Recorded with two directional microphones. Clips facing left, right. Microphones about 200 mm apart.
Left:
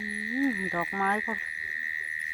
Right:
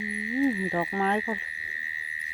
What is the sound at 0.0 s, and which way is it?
Insect, 20° right (ahead or behind).